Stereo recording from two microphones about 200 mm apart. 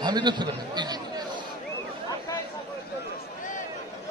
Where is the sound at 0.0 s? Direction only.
20° right (ahead or behind).